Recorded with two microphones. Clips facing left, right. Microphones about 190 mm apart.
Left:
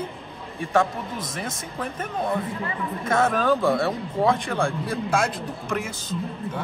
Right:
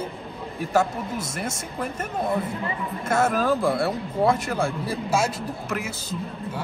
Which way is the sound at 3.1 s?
5° right (ahead or behind).